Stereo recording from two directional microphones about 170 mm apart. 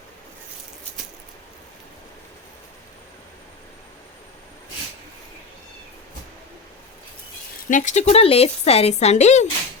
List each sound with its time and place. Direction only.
7.7 s speech: 45° left (ahead or behind)